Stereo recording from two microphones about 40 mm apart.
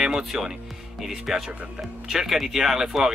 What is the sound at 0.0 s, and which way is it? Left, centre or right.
Speech, centre.